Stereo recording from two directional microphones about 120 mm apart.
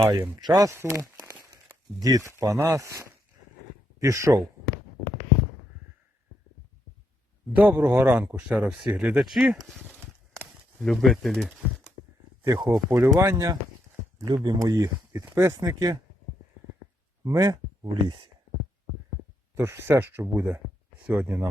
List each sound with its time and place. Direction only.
0.0 s speech: 30° right (ahead or behind)
7.5 s speech: 15° right (ahead or behind)
10.8 s speech: centre (ahead or behind)
12.5 s speech: 35° right (ahead or behind)
12.9 s speech: 20° right (ahead or behind)
14.3 s speech: 35° right (ahead or behind)
17.2 s speech: 30° right (ahead or behind)
19.5 s speech: 20° right (ahead or behind)